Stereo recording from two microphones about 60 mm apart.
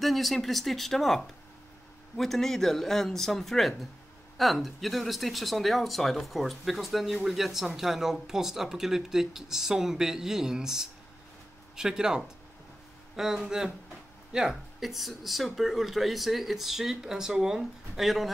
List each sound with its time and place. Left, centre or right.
0.0 s speech: centre